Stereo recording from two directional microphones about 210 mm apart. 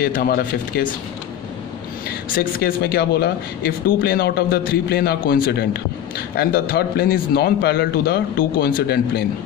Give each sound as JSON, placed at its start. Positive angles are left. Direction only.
{"t": 0.0, "sound": "speech", "side_deg": 45}
{"t": 2.3, "sound": "speech", "side_deg": 45}